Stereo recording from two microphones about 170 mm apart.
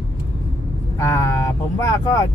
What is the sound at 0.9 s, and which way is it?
Speech, 15° left (ahead or behind).